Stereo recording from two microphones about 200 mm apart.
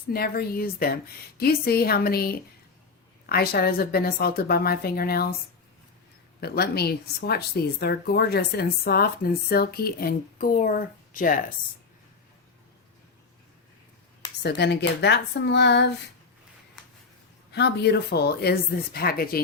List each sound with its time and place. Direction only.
0.1 s speech: 50° left (ahead or behind)
6.4 s speech: 50° left (ahead or behind)
14.4 s speech: 55° left (ahead or behind)
17.5 s speech: 55° left (ahead or behind)